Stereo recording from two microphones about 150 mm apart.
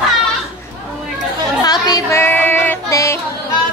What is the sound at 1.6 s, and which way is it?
Music, 25° left (ahead or behind).